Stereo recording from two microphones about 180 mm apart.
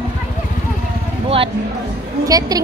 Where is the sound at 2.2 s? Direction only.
20° right (ahead or behind).